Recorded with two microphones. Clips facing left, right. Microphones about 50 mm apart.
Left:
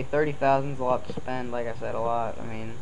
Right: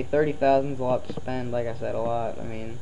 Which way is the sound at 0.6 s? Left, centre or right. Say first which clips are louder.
Right 1 dB; centre.